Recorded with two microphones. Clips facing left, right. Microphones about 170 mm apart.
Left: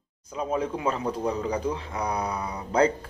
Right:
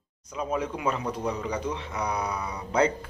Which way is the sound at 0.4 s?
30° left (ahead or behind).